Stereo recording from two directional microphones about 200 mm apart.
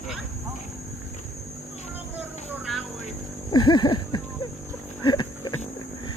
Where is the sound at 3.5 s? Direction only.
20° left (ahead or behind).